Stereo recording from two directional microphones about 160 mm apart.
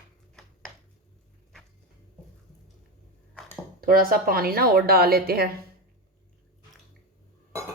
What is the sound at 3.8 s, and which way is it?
A woman's voice, 65° right (ahead or behind).